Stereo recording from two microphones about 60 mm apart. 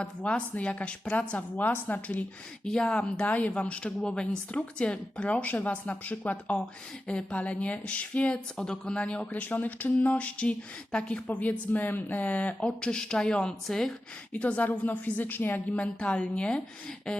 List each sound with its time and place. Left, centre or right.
0.0 s a woman's voice: centre
2.6 s a woman's voice: centre
7.1 s a woman's voice: centre
8.5 s a woman's voice: centre
14.3 s a woman's voice: left
17.1 s a sound: centre